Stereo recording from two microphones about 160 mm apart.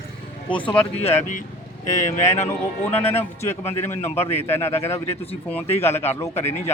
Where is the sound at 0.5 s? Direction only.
30° left (ahead or behind).